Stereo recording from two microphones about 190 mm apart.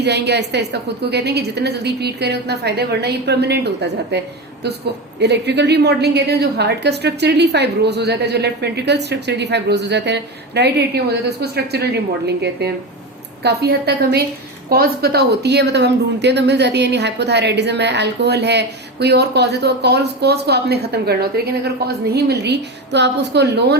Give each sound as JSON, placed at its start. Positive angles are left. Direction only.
{"t": 0.0, "sound": "speech", "side_deg": -60}
{"t": 5.2, "sound": "speech", "side_deg": -65}